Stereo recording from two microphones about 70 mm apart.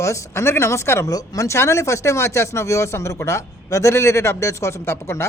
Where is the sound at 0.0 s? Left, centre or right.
Left.